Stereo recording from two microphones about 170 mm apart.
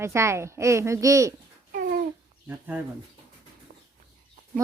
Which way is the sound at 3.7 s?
60° right (ahead or behind).